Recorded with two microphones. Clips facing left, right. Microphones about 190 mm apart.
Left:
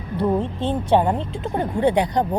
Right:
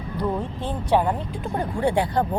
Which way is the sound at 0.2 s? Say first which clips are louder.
Left 5 dB; 25° left (ahead or behind).